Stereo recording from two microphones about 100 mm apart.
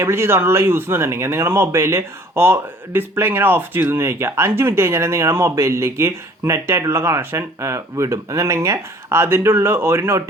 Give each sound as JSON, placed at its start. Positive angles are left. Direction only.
{"t": 0.0, "sound": "speech", "side_deg": -25}